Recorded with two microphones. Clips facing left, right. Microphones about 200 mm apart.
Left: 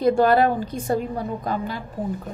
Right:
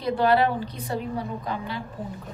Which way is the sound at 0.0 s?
45° left (ahead or behind).